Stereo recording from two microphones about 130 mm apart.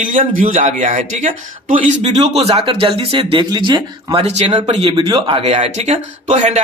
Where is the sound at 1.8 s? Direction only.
55° right (ahead or behind); by 4.2 s 35° right (ahead or behind).